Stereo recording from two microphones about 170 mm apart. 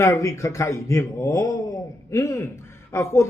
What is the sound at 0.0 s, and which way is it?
Speech, 15° left (ahead or behind).